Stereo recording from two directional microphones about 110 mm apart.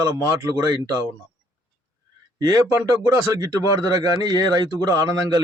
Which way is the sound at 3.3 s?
35° right (ahead or behind).